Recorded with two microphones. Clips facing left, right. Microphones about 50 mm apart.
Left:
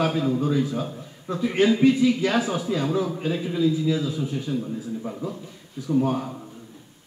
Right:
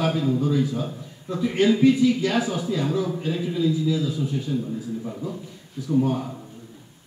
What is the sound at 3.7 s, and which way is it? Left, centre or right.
Speech, left.